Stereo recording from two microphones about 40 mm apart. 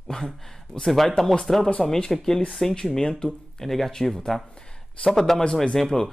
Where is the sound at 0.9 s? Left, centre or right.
Centre.